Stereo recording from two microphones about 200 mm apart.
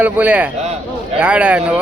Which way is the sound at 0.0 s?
5° right (ahead or behind).